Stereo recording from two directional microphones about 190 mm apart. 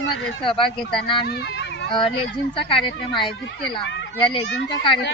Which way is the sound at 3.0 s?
25° left (ahead or behind).